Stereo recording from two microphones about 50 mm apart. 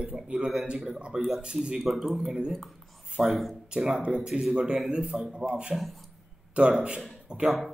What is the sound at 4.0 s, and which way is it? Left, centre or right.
Speech, centre.